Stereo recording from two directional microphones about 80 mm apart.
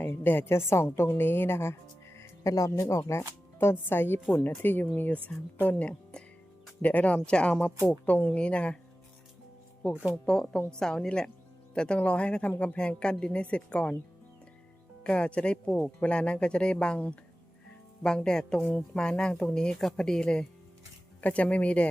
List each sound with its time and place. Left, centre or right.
0.0 s a woman's voice: left
10.2 s a woman's voice: centre
15.0 s a woman's voice: centre